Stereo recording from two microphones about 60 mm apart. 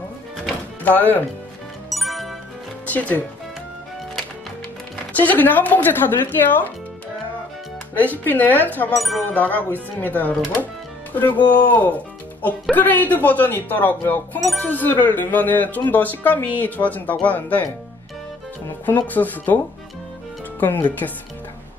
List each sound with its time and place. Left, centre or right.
0.8 s speech: left
1.9 s music: centre
2.9 s speech: left
5.1 s speech: left
7.9 s speech: left
8.9 s speech: centre
9.3 s speech: left
18.9 s speech: left
20.6 s speech: left